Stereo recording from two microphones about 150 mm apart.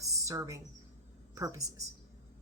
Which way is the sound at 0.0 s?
20° right (ahead or behind).